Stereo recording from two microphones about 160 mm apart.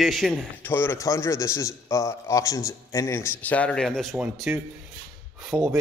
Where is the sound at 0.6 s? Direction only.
15° left (ahead or behind).